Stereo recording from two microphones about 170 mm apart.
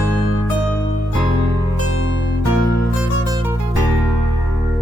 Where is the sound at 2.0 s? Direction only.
90° left.